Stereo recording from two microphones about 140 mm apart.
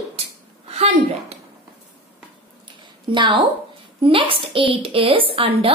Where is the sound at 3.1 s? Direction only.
35° right (ahead or behind).